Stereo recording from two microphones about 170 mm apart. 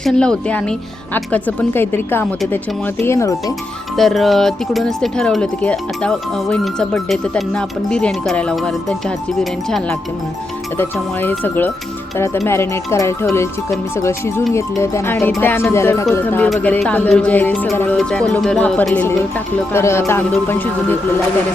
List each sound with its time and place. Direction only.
0.0 s music: 5° left (ahead or behind)
3.9 s speech: centre (ahead or behind)
11.2 s music: 10° left (ahead or behind)